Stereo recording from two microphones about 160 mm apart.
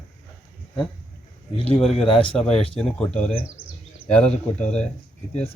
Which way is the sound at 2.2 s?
5° left (ahead or behind).